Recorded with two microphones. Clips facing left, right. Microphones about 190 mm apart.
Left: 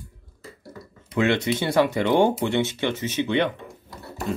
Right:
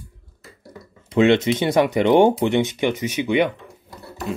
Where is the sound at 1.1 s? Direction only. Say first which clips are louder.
Right 6 dB; 20° right (ahead or behind).